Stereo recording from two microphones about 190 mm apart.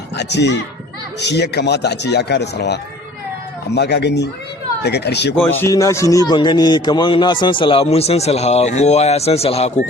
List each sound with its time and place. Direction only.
0.2 s a man's voice: 65° left (ahead or behind)
3.8 s a man's voice: 60° left (ahead or behind)
5.4 s a man's voice: 15° left (ahead or behind); by 9.8 s 35° left (ahead or behind)